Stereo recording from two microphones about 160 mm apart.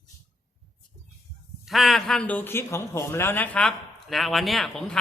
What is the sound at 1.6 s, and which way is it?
A man's voice, centre (ahead or behind).